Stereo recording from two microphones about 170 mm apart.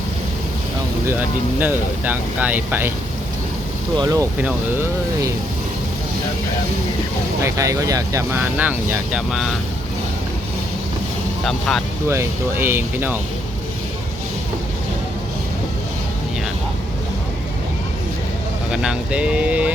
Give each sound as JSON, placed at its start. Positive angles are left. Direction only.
{"t": 1.0, "sound": "speech", "side_deg": -10}
{"t": 3.9, "sound": "speech", "side_deg": -20}
{"t": 7.4, "sound": "speech", "side_deg": -20}
{"t": 11.4, "sound": "speech", "side_deg": 0}
{"t": 12.0, "sound": "speech", "side_deg": -15}
{"t": 18.7, "sound": "speech", "side_deg": -5}